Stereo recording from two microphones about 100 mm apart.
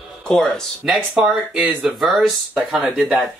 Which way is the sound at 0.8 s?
10° right (ahead or behind).